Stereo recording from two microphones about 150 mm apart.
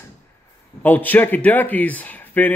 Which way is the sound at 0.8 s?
10° left (ahead or behind).